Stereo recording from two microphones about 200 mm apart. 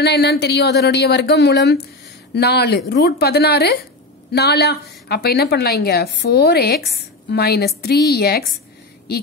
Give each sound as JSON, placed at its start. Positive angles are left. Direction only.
{"t": 0.0, "sound": "a woman's voice", "side_deg": 55}